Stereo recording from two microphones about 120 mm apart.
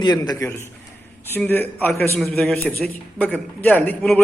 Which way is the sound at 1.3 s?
15° left (ahead or behind).